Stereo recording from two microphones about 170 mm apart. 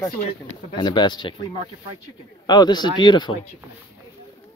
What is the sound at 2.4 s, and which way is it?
Speech, 25° left (ahead or behind).